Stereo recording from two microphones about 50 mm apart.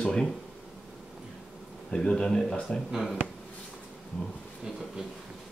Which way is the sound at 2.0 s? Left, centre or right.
Centre.